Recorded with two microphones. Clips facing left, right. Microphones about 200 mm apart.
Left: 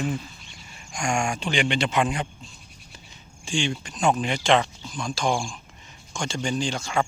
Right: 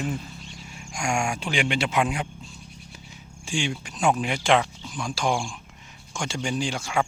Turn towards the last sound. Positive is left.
turn(degrees=-10)  # may be behind; listen again after turning